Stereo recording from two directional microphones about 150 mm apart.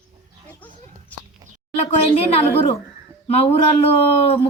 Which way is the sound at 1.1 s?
10° left (ahead or behind).